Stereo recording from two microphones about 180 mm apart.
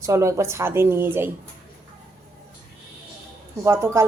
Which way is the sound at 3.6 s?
15° right (ahead or behind).